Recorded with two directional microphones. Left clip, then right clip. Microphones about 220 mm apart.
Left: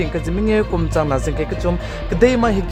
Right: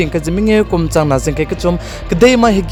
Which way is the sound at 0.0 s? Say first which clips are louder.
Right 5 dB; 40° right (ahead or behind).